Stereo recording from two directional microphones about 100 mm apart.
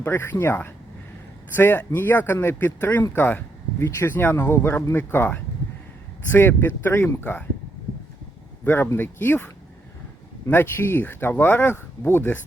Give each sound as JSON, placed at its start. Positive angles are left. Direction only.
{"t": 0.0, "sound": "speech", "side_deg": 20}
{"t": 8.6, "sound": "speech", "side_deg": 20}
{"t": 10.5, "sound": "speech", "side_deg": 20}